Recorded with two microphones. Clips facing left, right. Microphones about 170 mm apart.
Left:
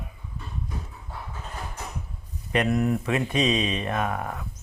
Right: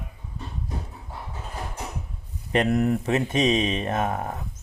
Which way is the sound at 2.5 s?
35° right (ahead or behind).